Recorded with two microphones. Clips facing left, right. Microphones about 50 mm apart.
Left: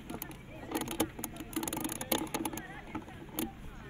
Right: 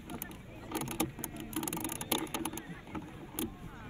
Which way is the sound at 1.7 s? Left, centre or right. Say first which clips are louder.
Left 3 dB; left.